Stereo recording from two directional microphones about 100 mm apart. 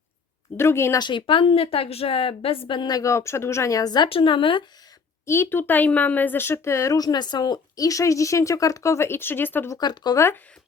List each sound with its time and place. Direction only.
0.5 s a woman's voice: 25° left (ahead or behind)
0.9 s a woman's voice: 50° left (ahead or behind)
2.9 s speech: 30° left (ahead or behind)
4.1 s speech: 60° left (ahead or behind)
5.2 s a woman's voice: 25° left (ahead or behind)
9.7 s speech: 45° left (ahead or behind)
10.2 s a woman's voice: 25° left (ahead or behind)